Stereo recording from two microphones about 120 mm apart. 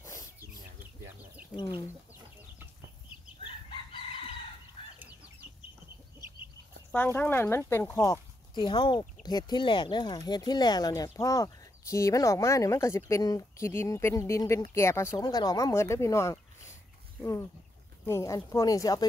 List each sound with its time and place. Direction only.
0.0 s bird: 25° left (ahead or behind)
4.9 s chicken: 15° right (ahead or behind)
7.2 s speech: 20° left (ahead or behind)
8.5 s speech: 40° left (ahead or behind); by 15.2 s 20° left (ahead or behind)
15.2 s speech: 35° left (ahead or behind)